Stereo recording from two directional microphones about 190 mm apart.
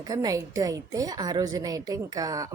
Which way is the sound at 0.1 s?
20° right (ahead or behind).